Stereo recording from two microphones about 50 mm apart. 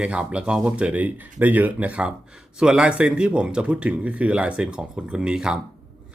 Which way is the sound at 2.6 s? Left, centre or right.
Centre.